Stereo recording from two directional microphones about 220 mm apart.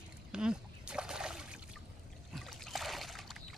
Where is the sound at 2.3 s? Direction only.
Centre (ahead or behind).